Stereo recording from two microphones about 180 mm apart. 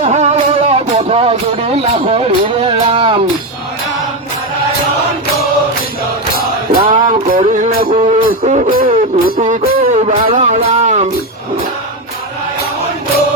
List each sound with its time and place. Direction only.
0.0 s music: 40° right (ahead or behind)
6.9 s music: 45° right (ahead or behind)